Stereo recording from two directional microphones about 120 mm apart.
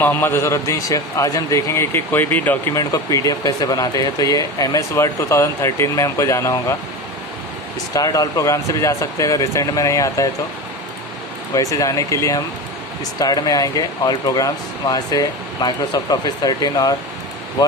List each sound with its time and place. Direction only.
0.0 s speech: 20° left (ahead or behind)
2.7 s speech: 30° left (ahead or behind)
7.9 s speech: 30° left (ahead or behind)
11.5 s speech: 30° left (ahead or behind)